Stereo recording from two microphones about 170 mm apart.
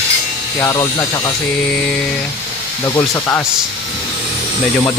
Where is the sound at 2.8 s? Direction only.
15° left (ahead or behind).